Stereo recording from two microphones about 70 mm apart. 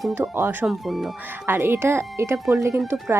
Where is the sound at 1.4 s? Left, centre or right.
Right.